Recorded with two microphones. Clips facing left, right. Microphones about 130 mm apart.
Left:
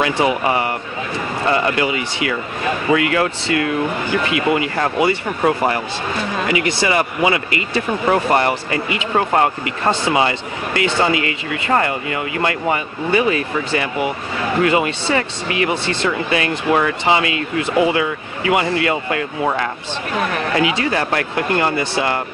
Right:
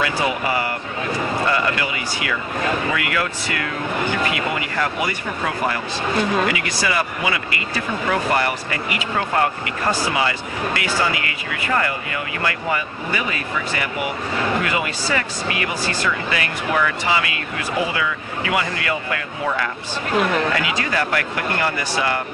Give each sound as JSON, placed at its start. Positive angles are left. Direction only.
{"t": 0.0, "sound": "speech", "side_deg": 25}
{"t": 19.4, "sound": "speech", "side_deg": 40}
{"t": 20.5, "sound": "speech", "side_deg": 25}